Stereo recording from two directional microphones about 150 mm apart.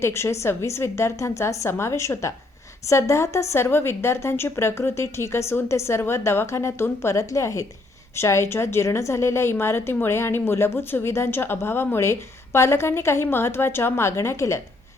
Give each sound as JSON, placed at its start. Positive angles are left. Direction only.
{"t": 0.0, "sound": "a woman's voice", "side_deg": 15}